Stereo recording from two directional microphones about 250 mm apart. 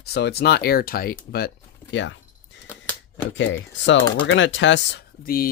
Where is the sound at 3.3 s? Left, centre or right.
Left.